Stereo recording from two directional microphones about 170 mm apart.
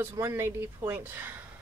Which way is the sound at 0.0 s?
15° right (ahead or behind).